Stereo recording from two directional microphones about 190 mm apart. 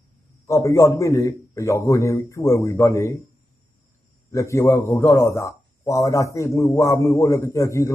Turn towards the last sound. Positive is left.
turn(degrees=15)  # may be behind; listen again after turning